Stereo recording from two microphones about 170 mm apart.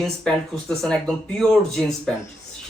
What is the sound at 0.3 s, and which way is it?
Speech, 5° left (ahead or behind).